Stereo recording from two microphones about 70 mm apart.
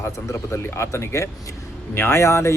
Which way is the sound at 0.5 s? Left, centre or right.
Left.